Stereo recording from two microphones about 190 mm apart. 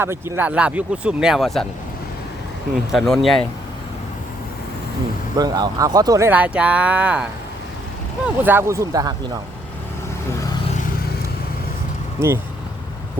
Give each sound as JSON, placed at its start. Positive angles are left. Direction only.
{"t": 0.0, "sound": "speech", "side_deg": -10}
{"t": 2.9, "sound": "speech", "side_deg": 0}
{"t": 5.4, "sound": "speech", "side_deg": -20}
{"t": 8.4, "sound": "speech", "side_deg": -15}
{"t": 12.2, "sound": "speech", "side_deg": -15}